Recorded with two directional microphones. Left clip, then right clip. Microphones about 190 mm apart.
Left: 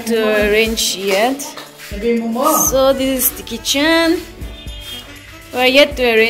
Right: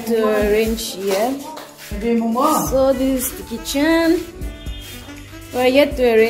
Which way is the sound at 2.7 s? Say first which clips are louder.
Left 3 dB; 5° right (ahead or behind).